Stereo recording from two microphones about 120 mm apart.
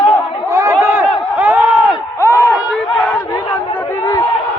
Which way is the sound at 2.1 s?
20° left (ahead or behind).